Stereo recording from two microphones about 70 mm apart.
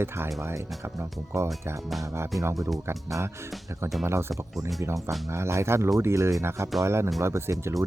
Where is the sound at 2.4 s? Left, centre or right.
Right.